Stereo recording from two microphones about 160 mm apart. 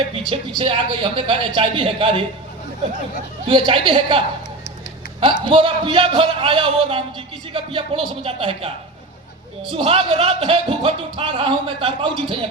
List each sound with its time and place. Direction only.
0.1 s speech: 35° right (ahead or behind)
3.4 s speech: 30° right (ahead or behind)
5.2 s speech: 30° right (ahead or behind)
9.7 s speech: 35° right (ahead or behind)